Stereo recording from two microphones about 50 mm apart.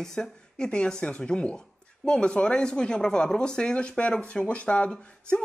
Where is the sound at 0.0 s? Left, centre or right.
Centre.